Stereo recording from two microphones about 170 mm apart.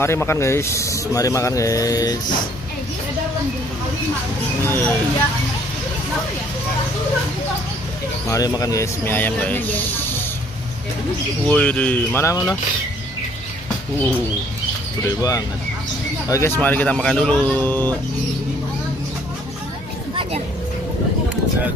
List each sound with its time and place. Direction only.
0.0 s speech: 15° left (ahead or behind)
4.6 s speech: 10° left (ahead or behind)
8.3 s speech: 20° left (ahead or behind)
11.4 s speech: 10° left (ahead or behind)
15.0 s speech: 20° left (ahead or behind)